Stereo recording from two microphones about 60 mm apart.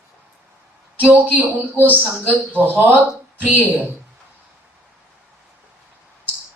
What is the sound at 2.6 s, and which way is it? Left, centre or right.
A woman's voice, right.